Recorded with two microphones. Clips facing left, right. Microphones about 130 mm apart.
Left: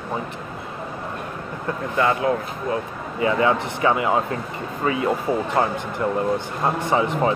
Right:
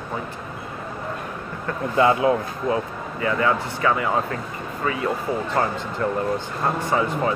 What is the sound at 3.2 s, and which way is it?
Speech, 20° left (ahead or behind).